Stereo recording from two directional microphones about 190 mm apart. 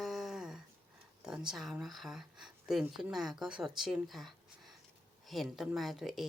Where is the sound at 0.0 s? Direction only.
Centre (ahead or behind).